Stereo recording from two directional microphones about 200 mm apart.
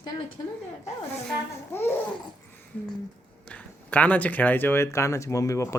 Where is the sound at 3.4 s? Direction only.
5° left (ahead or behind).